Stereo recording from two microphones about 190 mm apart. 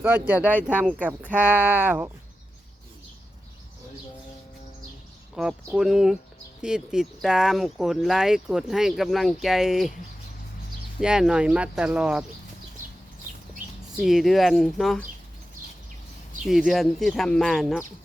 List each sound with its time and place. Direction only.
0.0 s speech: 10° right (ahead or behind)
5.3 s speech: 5° right (ahead or behind)
11.0 s speech: 5° right (ahead or behind)
13.3 s a sound: 40° right (ahead or behind)
14.0 s speech: centre (ahead or behind)
16.5 s speech: centre (ahead or behind)